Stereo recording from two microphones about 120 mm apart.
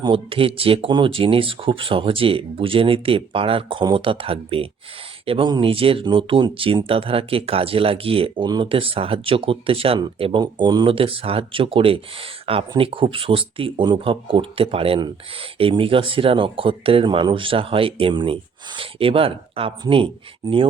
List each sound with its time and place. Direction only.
0.0 s speech: 45° right (ahead or behind)